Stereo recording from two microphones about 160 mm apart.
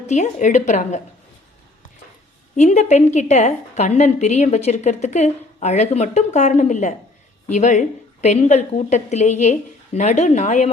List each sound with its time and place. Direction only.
0.1 s a woman's voice: 50° left (ahead or behind)
2.6 s a woman's voice: 45° left (ahead or behind)